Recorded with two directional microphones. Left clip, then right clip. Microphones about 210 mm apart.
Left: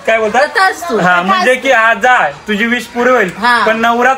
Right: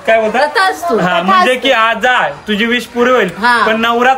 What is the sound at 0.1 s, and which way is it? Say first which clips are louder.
A man's voice: even; 15° left (ahead or behind).